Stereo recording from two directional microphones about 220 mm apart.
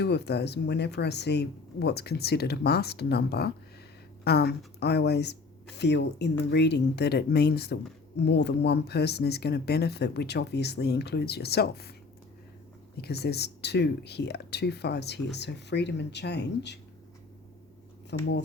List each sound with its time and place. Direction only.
0.0 s speech: 50° left (ahead or behind)
13.0 s speech: 45° left (ahead or behind)
18.1 s speech: 50° left (ahead or behind)